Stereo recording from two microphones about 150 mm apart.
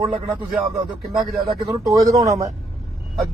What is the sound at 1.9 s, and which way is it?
Speech, 25° right (ahead or behind).